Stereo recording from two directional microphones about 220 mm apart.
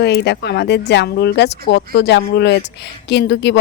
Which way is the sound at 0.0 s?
50° left (ahead or behind).